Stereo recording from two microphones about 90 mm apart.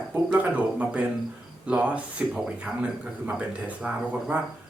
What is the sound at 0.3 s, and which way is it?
Speech, 15° right (ahead or behind).